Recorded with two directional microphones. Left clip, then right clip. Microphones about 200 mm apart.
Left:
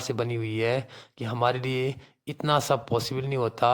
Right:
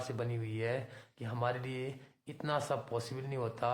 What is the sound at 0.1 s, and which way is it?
Speech, 45° left (ahead or behind).